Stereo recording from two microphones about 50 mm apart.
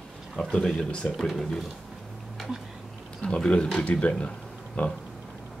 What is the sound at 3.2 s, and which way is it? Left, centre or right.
Speech, left.